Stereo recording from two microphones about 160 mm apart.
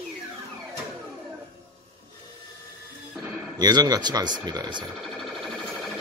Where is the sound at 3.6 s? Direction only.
25° right (ahead or behind).